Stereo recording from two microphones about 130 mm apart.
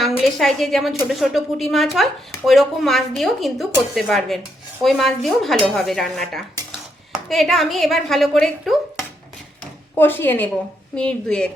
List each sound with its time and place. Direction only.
0.0 s a woman's voice: centre (ahead or behind)
10.0 s a woman's voice: 15° left (ahead or behind)